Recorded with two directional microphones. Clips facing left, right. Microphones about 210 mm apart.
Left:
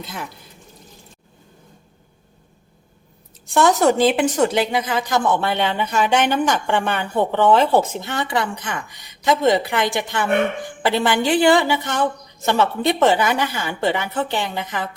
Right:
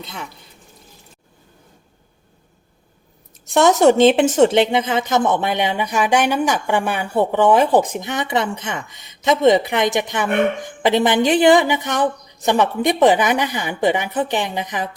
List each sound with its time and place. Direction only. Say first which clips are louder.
0.0 s speech: left 1 dB; centre (ahead or behind)
3.5 s speech: right 3 dB; 20° right (ahead or behind)